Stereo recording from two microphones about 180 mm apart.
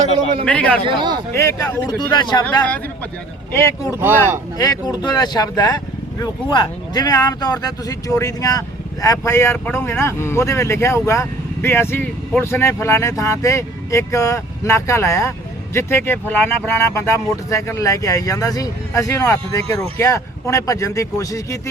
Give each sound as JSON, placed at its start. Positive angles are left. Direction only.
{"t": 0.4, "sound": "speech", "side_deg": 5}
{"t": 0.9, "sound": "speech", "side_deg": -25}
{"t": 1.3, "sound": "speech", "side_deg": 15}
{"t": 2.4, "sound": "speech", "side_deg": 10}
{"t": 3.9, "sound": "speech", "side_deg": -10}
{"t": 4.5, "sound": "speech", "side_deg": 20}